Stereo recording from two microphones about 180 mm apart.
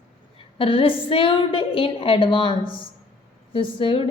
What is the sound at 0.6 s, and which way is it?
A woman's voice, 30° left (ahead or behind).